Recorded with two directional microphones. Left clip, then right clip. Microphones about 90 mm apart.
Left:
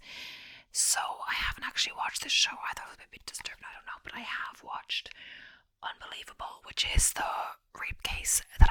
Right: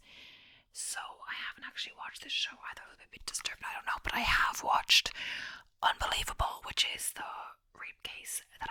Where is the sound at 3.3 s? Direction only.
5° right (ahead or behind).